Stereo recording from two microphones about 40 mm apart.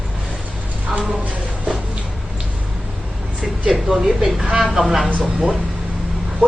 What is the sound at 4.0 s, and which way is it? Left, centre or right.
A woman's voice, centre.